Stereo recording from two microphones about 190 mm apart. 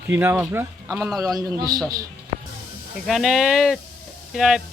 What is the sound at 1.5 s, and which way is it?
Speech, 20° right (ahead or behind).